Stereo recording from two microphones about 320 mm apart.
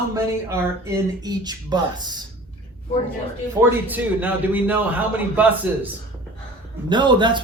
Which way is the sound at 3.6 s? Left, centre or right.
Centre.